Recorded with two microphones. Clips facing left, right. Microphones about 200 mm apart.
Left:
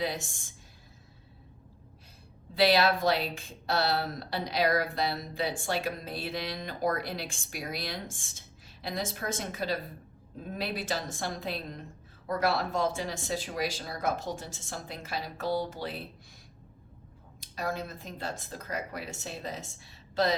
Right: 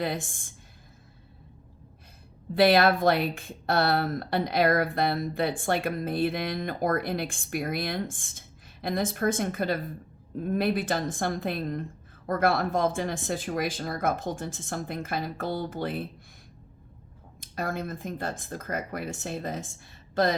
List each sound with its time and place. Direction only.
0.0 s speech: 55° right (ahead or behind)
2.6 s speech: 55° right (ahead or behind)
17.4 s speech: 55° right (ahead or behind)